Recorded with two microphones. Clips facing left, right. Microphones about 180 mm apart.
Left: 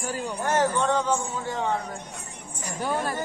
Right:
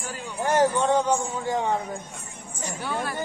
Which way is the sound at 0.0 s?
40° left (ahead or behind).